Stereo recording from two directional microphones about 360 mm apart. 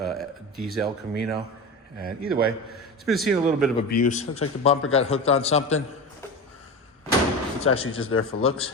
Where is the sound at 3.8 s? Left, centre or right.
Left.